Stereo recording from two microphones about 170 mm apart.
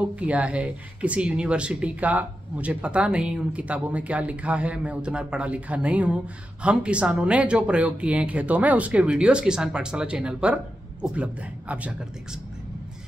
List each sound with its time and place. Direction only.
0.1 s speech: 10° right (ahead or behind)